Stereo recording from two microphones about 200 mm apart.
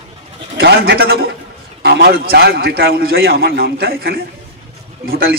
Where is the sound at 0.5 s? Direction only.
55° right (ahead or behind).